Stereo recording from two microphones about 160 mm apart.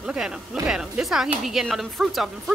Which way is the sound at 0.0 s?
5° right (ahead or behind).